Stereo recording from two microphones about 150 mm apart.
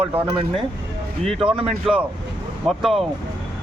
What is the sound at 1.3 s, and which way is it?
Speech, 35° right (ahead or behind).